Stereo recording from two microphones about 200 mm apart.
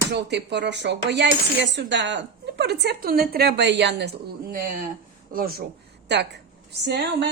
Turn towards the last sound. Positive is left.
turn(degrees=-60)  # may be behind; listen again after turning